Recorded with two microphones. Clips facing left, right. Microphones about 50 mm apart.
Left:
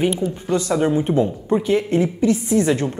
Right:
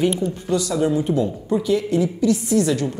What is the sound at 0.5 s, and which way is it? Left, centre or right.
A woman's voice, left.